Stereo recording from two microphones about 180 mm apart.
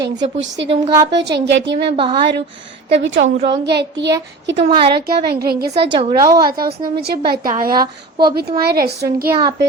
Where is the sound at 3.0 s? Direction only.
90° right.